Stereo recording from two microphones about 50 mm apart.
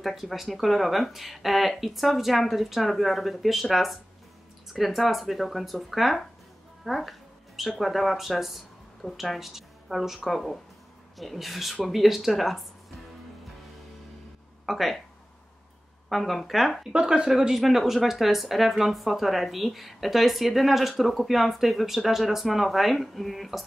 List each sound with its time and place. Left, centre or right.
0.0 s a woman's voice: centre
14.7 s a woman's voice: centre
16.1 s a woman's voice: centre
16.9 s speech: centre
17.3 s a woman's voice: centre